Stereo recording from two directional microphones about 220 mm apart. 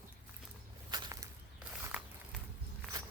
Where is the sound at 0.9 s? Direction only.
20° right (ahead or behind).